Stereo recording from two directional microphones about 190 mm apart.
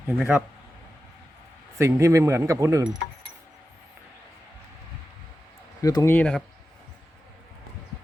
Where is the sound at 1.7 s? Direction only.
15° right (ahead or behind).